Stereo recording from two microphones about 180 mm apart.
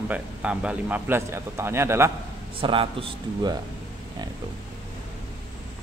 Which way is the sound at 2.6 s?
30° right (ahead or behind).